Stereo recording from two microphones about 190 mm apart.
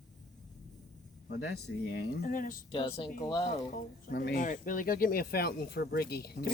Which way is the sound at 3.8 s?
50° left (ahead or behind).